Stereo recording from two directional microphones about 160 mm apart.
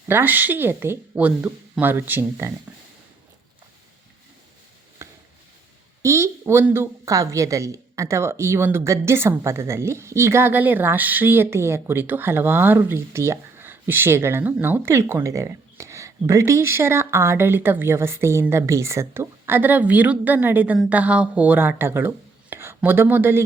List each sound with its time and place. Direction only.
0.1 s speech: 10° right (ahead or behind)
6.0 s speech: 20° right (ahead or behind)